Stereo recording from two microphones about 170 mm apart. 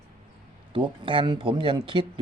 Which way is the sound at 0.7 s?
30° right (ahead or behind).